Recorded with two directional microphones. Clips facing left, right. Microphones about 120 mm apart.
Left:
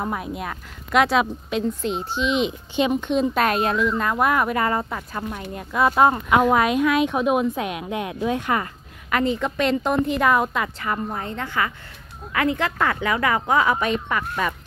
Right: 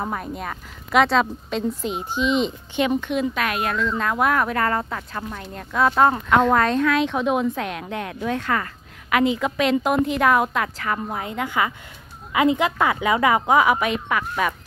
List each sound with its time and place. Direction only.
0.0 s a woman's voice: 5° left (ahead or behind)
3.1 s speech: 35° left (ahead or behind)
3.6 s speech: 20° left (ahead or behind)
3.9 s speech: centre (ahead or behind); by 8.6 s 15° left (ahead or behind)
9.1 s a woman's voice: 5° right (ahead or behind)